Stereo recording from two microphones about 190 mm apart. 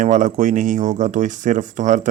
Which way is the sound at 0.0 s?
40° right (ahead or behind).